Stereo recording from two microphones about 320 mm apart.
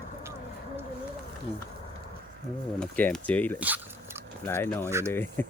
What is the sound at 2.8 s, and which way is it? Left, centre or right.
Speech, centre.